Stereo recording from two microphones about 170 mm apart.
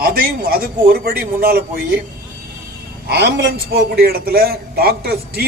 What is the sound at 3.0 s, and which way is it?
Speech, 75° right (ahead or behind).